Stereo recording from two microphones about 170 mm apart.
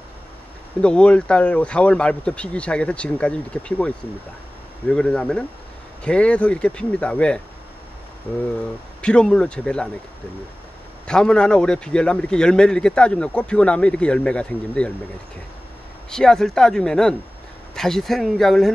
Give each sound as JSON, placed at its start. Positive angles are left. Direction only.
{"t": 0.7, "sound": "a man's voice", "side_deg": 5}
{"t": 9.0, "sound": "a man's voice", "side_deg": 5}
{"t": 11.1, "sound": "a man's voice", "side_deg": 5}
{"t": 16.1, "sound": "a man's voice", "side_deg": 5}